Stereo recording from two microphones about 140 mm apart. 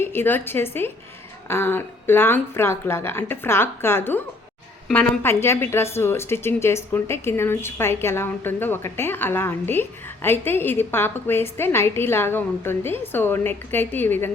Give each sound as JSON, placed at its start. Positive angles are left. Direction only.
{"t": 0.0, "sound": "a woman's voice", "side_deg": 15}